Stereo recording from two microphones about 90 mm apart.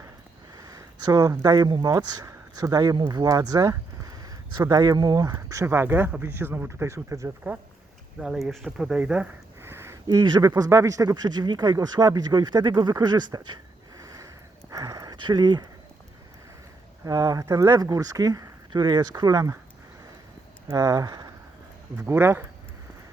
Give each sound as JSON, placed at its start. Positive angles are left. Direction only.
{"t": 0.5, "sound": "speech", "side_deg": -45}
{"t": 5.6, "sound": "speech", "side_deg": -25}
{"t": 6.7, "sound": "speech", "side_deg": -35}
{"t": 8.2, "sound": "speech", "side_deg": -5}
{"t": 9.6, "sound": "a sound", "side_deg": -30}
{"t": 10.2, "sound": "speech", "side_deg": -50}
{"t": 14.0, "sound": "a sound", "side_deg": -40}
{"t": 17.1, "sound": "speech", "side_deg": -40}
{"t": 20.7, "sound": "speech", "side_deg": -40}
{"t": 21.9, "sound": "speech", "side_deg": -25}